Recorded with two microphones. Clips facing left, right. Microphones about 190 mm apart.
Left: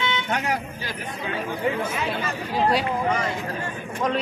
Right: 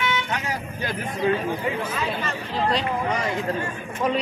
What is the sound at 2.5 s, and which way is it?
Speech, 10° left (ahead or behind).